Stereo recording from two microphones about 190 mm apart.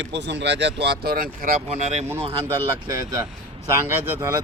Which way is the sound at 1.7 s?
35° right (ahead or behind).